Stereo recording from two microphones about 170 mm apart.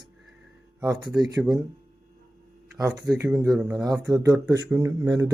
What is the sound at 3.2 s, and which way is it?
Speech, 5° right (ahead or behind).